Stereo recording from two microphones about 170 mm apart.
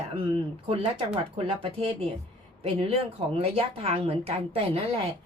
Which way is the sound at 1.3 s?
35° right (ahead or behind).